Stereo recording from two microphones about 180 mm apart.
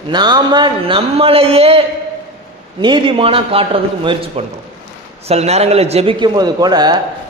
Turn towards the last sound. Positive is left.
turn(degrees=-25)  # may be behind; listen again after turning